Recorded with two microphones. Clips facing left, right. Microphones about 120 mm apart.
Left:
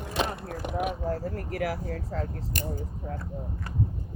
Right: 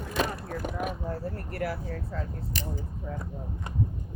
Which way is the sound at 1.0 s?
90° left.